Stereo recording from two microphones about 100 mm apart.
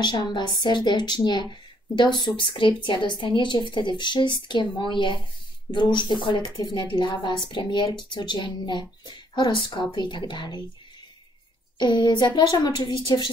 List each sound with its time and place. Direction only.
0.0 s a woman's voice: 45° left (ahead or behind)
11.8 s a woman's voice: 50° left (ahead or behind)